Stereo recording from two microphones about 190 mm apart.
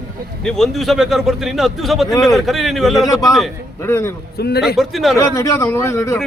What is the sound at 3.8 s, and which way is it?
Speech, 15° left (ahead or behind).